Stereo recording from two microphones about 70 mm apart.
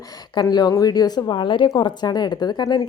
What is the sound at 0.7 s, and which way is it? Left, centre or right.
Speech, left.